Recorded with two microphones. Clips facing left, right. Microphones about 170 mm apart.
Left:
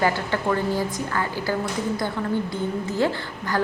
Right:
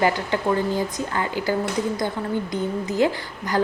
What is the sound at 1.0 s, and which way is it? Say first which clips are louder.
A woman's voice: right 1 dB; 20° right (ahead or behind).